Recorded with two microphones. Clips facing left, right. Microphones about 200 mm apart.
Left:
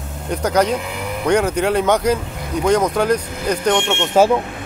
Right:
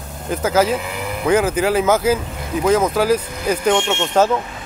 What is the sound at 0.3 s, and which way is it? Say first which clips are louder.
Speech: even; 5° right (ahead or behind).